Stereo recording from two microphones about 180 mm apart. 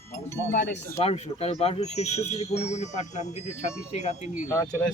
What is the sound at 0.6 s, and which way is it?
Speech, 75° left (ahead or behind).